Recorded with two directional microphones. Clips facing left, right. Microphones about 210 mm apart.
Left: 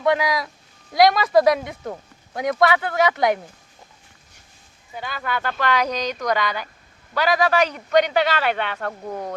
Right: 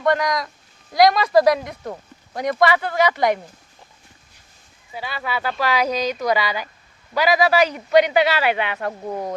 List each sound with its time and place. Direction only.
0.0 s speech: 5° left (ahead or behind)
4.9 s a man's voice: 5° right (ahead or behind)